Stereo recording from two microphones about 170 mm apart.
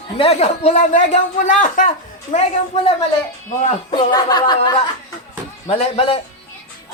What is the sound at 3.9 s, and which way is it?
Speech, 25° left (ahead or behind).